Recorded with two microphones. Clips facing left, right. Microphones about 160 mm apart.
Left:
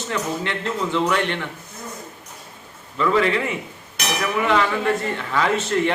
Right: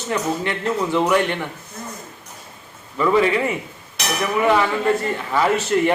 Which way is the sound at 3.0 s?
15° right (ahead or behind).